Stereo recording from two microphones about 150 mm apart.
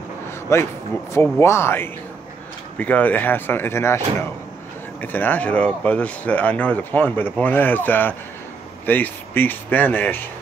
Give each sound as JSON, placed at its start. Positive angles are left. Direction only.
{"t": 0.5, "sound": "speech", "side_deg": 20}
{"t": 5.0, "sound": "speech", "side_deg": 10}